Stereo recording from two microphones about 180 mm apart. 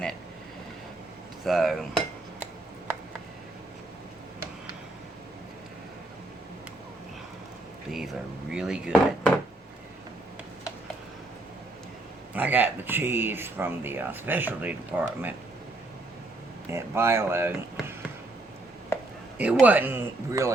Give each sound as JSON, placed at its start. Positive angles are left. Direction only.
{"t": 1.5, "sound": "speech", "side_deg": 0}
{"t": 7.9, "sound": "speech", "side_deg": 0}
{"t": 12.3, "sound": "speech", "side_deg": -10}
{"t": 16.7, "sound": "speech", "side_deg": -15}
{"t": 19.6, "sound": "speech", "side_deg": -10}